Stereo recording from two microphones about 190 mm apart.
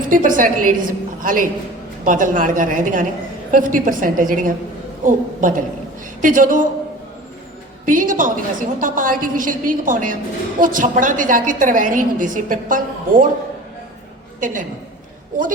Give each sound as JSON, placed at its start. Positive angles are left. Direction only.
{"t": 0.0, "sound": "a woman's voice", "side_deg": -45}
{"t": 7.9, "sound": "a woman's voice", "side_deg": -45}